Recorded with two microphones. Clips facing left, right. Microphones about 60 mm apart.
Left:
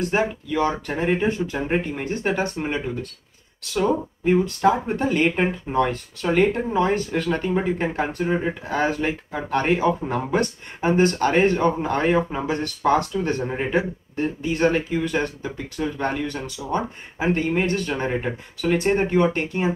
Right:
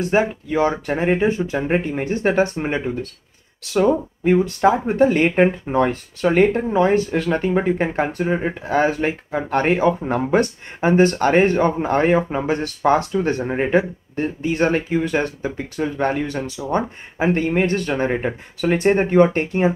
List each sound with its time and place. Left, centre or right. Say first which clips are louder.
0.0 s speech: right 4 dB; right
4.6 s speech: right 7 dB; right
8.6 s speech: right 6 dB; right